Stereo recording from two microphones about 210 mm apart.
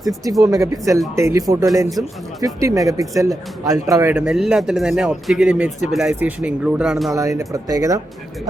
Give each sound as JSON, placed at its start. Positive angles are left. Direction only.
{"t": 0.4, "sound": "speech", "side_deg": -15}
{"t": 7.1, "sound": "speech", "side_deg": -15}